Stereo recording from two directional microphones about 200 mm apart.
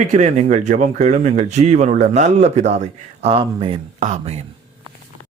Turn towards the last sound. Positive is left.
turn(degrees=-35)  # may be behind; listen again after turning